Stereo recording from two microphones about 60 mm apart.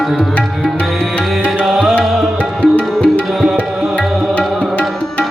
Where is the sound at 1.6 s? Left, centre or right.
Centre.